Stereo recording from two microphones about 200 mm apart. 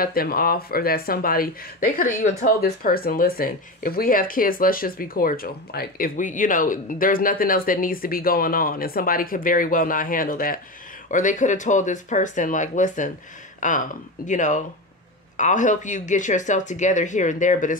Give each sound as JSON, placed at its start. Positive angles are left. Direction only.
{"t": 0.0, "sound": "speech", "side_deg": 45}